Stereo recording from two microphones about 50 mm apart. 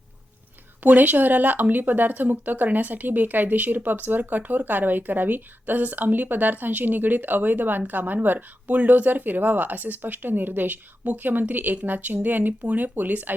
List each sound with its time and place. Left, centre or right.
0.8 s speech: right